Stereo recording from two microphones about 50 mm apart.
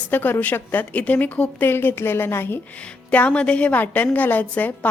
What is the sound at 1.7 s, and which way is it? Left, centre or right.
Speech, left.